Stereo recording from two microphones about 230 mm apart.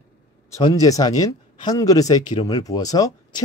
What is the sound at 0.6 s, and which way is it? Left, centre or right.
A man's voice, centre.